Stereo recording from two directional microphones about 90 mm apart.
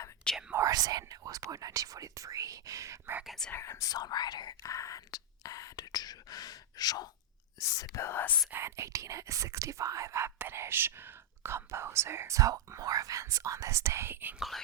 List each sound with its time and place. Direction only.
0.5 s speech: 40° right (ahead or behind)
3.2 s speech: 5° left (ahead or behind)
3.5 s speech: 30° left (ahead or behind)
3.8 s speech: 45° left (ahead or behind)
4.7 s speech: 40° left (ahead or behind); by 8.4 s 25° left (ahead or behind)
8.5 s speech: 30° right (ahead or behind)
12.4 s speech: 40° right (ahead or behind); by 14.3 s 25° right (ahead or behind)
14.3 s speech: centre (ahead or behind)